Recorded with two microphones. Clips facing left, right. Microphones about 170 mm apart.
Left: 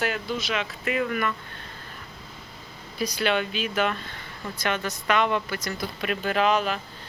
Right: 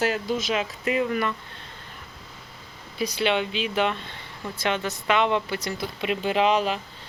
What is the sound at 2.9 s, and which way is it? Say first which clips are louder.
A woman's voice: right 1 dB; 25° right (ahead or behind).